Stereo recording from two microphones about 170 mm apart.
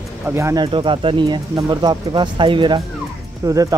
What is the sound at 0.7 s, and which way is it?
Speech, 30° right (ahead or behind).